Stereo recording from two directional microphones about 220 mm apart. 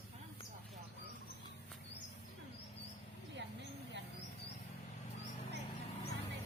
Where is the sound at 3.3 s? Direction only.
50° right (ahead or behind).